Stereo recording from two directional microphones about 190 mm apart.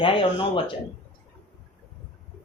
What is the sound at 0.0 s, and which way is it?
Speech, 25° left (ahead or behind).